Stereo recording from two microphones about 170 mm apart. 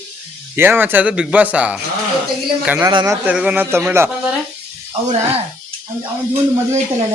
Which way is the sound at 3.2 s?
5° right (ahead or behind).